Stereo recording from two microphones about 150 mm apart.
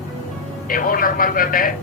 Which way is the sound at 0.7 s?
70° left (ahead or behind).